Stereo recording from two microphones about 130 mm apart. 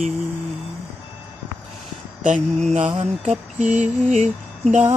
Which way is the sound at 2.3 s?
70° right (ahead or behind).